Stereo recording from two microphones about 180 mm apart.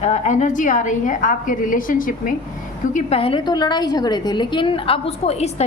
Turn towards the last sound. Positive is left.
turn(degrees=35)  # may be behind; listen again after turning